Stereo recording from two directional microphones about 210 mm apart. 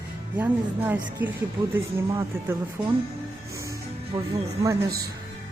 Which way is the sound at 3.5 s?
15° right (ahead or behind).